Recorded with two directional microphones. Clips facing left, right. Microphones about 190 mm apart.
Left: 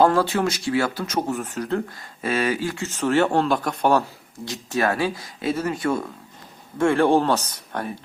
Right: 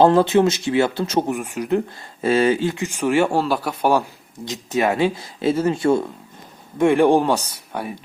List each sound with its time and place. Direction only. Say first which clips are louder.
0.0 s speech: right 5 dB; 20° right (ahead or behind)
1.3 s speech: right 4 dB; 10° right (ahead or behind)
2.0 s speech: right 6 dB; 30° right (ahead or behind); by 4.0 s 10° right (ahead or behind)
4.4 s speech: right 3 dB; 20° right (ahead or behind)
6.7 s speech: right 3 dB; 15° right (ahead or behind)